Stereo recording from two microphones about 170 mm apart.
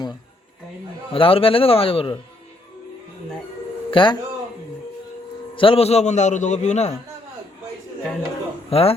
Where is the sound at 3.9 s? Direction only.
30° left (ahead or behind).